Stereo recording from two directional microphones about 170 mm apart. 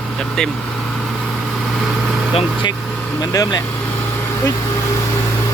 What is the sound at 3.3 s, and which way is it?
Speech, 20° left (ahead or behind).